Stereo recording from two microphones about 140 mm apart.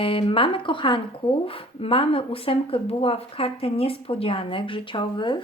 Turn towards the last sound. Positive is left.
turn(degrees=35)  # may be behind; listen again after turning